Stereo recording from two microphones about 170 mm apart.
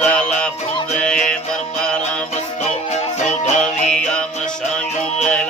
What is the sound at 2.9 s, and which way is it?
Music, 40° left (ahead or behind).